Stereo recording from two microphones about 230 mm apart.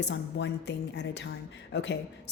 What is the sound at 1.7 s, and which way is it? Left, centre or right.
Speech, left.